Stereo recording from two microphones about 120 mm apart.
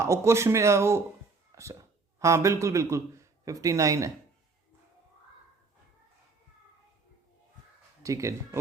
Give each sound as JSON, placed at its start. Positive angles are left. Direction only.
{"t": 0.0, "sound": "a man's voice", "side_deg": -25}
{"t": 8.0, "sound": "a man's voice", "side_deg": -25}